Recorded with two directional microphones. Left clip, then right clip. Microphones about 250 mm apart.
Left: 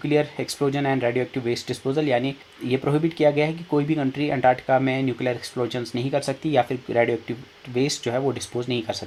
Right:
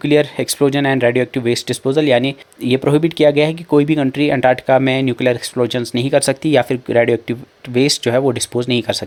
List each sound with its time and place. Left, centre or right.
0.0 s speech: right